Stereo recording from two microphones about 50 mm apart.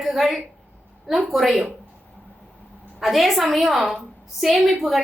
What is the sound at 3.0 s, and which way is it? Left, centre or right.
A woman's voice, centre.